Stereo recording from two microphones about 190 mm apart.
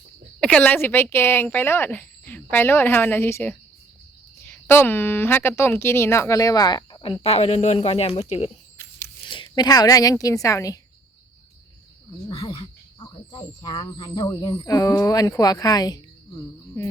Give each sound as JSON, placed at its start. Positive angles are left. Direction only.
{"t": 0.3, "sound": "a woman's voice", "side_deg": 5}
{"t": 12.3, "sound": "speech", "side_deg": 30}